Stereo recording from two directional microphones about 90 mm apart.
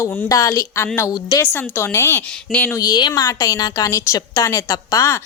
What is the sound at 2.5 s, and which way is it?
Speech, 15° left (ahead or behind).